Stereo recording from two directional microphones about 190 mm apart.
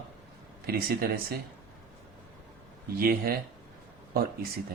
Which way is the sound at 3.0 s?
50° right (ahead or behind).